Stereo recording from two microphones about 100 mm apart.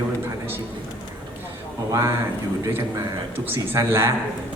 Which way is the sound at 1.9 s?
30° right (ahead or behind).